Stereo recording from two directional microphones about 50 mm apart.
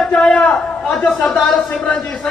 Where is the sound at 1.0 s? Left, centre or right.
Centre.